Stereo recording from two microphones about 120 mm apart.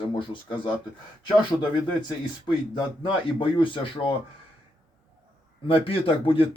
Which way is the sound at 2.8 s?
45° left (ahead or behind).